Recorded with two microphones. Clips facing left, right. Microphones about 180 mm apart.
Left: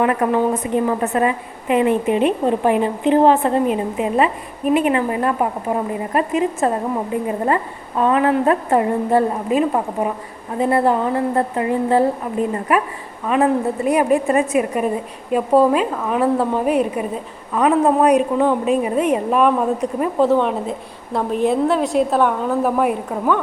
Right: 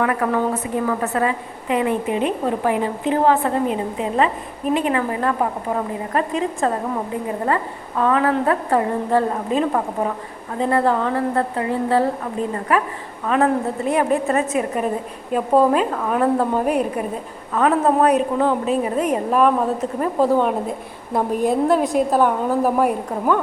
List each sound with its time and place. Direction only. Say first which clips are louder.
0.0 s a woman's voice: left 3 dB; 20° left (ahead or behind); by 22.9 s 5° right (ahead or behind)